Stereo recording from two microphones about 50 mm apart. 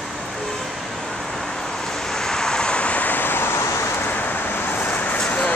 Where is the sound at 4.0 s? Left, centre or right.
Left.